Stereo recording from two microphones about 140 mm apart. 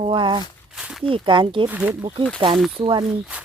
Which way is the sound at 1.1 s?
35° right (ahead or behind).